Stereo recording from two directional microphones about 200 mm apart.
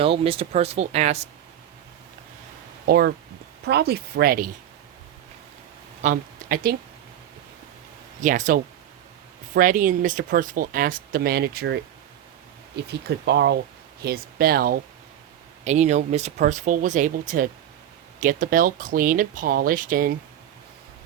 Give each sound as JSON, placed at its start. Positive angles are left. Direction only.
{"t": 0.0, "sound": "speech", "side_deg": -30}
{"t": 2.8, "sound": "speech", "side_deg": -50}
{"t": 6.0, "sound": "speech", "side_deg": -40}
{"t": 8.2, "sound": "speech", "side_deg": -40}
{"t": 15.6, "sound": "speech", "side_deg": -35}